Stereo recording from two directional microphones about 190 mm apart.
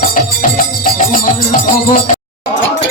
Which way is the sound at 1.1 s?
45° left (ahead or behind).